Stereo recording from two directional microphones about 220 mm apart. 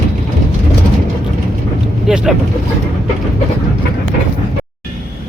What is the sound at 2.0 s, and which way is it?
Speech, 5° right (ahead or behind).